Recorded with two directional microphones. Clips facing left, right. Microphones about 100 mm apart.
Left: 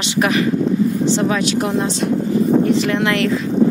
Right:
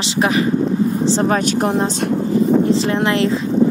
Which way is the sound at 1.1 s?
40° right (ahead or behind).